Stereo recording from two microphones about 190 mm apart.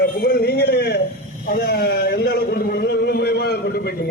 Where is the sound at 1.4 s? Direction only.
50° left (ahead or behind).